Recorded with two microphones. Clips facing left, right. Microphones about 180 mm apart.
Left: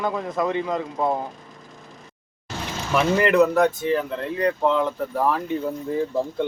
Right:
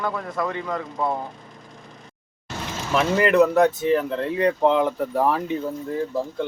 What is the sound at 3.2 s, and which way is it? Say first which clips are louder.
Speech: right 2 dB; centre (ahead or behind).